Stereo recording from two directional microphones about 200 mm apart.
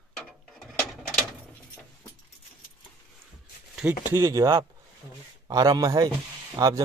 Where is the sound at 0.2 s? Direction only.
Centre (ahead or behind).